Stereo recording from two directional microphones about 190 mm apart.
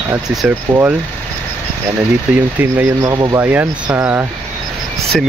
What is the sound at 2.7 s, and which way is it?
Speech, 15° right (ahead or behind).